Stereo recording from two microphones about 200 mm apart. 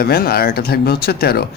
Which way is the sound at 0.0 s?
50° left (ahead or behind).